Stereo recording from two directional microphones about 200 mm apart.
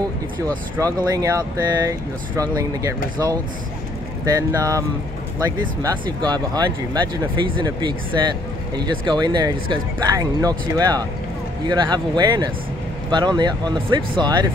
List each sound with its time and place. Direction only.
0.7 s speech: 15° right (ahead or behind)
4.2 s speech: 15° right (ahead or behind)